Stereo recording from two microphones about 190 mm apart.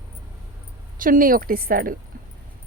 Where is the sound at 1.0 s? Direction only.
45° right (ahead or behind).